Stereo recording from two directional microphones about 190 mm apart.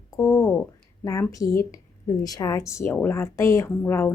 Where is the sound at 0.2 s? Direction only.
15° left (ahead or behind).